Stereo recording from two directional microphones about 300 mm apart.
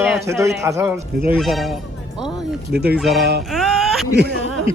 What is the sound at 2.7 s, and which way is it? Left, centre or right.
Speech, right.